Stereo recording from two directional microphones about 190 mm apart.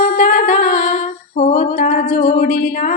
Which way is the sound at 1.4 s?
40° left (ahead or behind).